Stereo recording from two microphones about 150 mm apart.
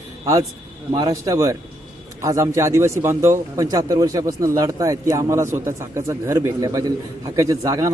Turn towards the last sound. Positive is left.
turn(degrees=-20)  # may be behind; listen again after turning